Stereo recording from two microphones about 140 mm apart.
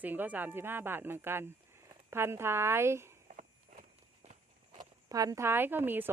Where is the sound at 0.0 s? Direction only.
15° right (ahead or behind).